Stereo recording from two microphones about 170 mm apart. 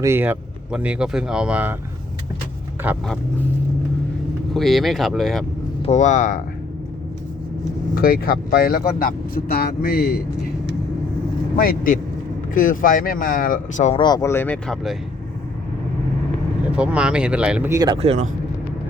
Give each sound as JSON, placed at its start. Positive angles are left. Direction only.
{"t": 0.0, "sound": "speech", "side_deg": -15}
{"t": 2.8, "sound": "speech", "side_deg": -10}
{"t": 4.5, "sound": "speech", "side_deg": 0}
{"t": 5.8, "sound": "speech", "side_deg": 45}
{"t": 7.9, "sound": "speech", "side_deg": 60}
{"t": 11.5, "sound": "speech", "side_deg": 60}
{"t": 13.9, "sound": "speech", "side_deg": 25}
{"t": 16.7, "sound": "speech", "side_deg": -5}
{"t": 17.7, "sound": "speech", "side_deg": -20}
{"t": 18.0, "sound": "speech", "side_deg": -40}